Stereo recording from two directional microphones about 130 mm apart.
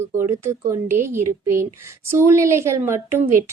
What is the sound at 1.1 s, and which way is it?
A woman's voice, 20° right (ahead or behind).